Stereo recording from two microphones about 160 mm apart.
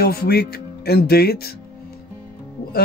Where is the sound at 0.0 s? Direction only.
80° left.